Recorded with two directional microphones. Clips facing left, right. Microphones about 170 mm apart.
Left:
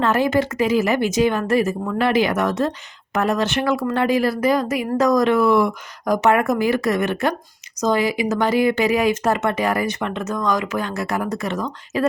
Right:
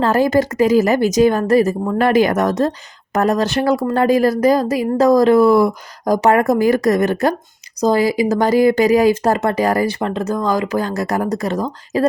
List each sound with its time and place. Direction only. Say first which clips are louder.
0.0 s speech: right 4 dB; 40° right (ahead or behind)